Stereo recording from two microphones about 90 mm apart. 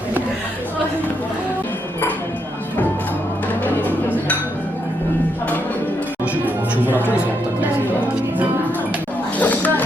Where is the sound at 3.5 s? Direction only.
20° left (ahead or behind).